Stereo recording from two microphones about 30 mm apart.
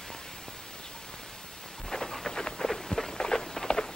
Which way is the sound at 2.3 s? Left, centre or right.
Left.